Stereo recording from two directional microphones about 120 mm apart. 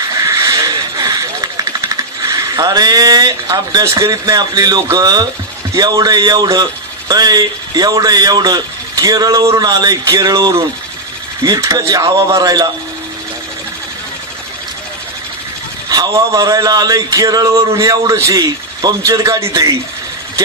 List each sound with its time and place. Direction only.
0.0 s a sound: 30° right (ahead or behind)
4.9 s speech: 30° right (ahead or behind)
15.9 s speech: 30° right (ahead or behind)